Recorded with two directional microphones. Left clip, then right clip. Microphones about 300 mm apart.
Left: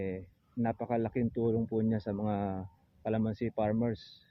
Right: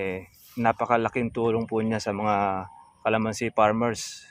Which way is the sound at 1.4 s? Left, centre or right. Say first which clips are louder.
Right 7 dB; centre.